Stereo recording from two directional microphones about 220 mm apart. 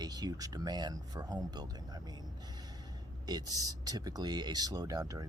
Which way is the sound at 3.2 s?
15° right (ahead or behind).